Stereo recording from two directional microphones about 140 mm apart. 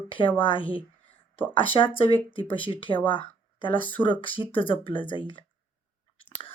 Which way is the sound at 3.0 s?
35° left (ahead or behind).